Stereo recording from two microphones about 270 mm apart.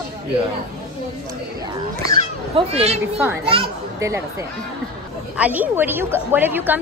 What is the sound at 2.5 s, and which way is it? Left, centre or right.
Speech, right.